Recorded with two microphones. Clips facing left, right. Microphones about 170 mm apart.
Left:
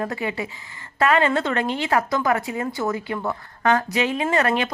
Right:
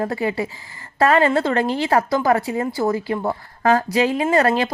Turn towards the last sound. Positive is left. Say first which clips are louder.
# right 4 dB
turn(degrees=-35)  # may be behind; listen again after turning